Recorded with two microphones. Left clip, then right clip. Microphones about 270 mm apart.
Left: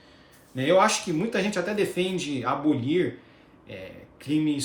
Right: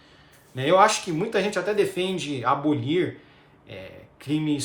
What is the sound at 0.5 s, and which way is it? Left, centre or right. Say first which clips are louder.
Speech: right 2 dB; centre.